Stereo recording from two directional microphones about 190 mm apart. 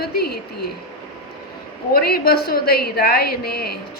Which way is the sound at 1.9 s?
55° left (ahead or behind).